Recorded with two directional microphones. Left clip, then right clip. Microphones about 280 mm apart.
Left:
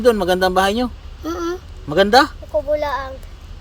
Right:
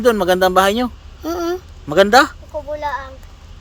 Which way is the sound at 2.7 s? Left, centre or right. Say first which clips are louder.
Left 1 dB; left.